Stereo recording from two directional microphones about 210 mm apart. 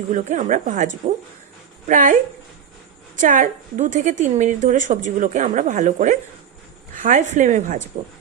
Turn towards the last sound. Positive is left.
turn(degrees=-35)  # may be behind; listen again after turning